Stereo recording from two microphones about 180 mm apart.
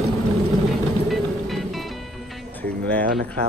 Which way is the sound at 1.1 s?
Centre (ahead or behind).